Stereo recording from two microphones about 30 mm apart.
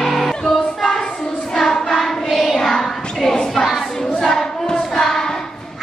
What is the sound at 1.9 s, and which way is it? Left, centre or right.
Choir, centre.